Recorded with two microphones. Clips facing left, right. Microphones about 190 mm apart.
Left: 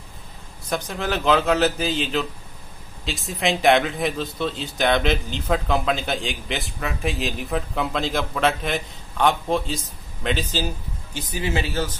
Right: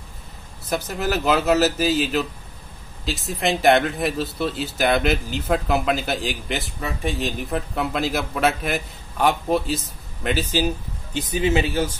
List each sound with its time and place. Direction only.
0.7 s a man's voice: 5° right (ahead or behind)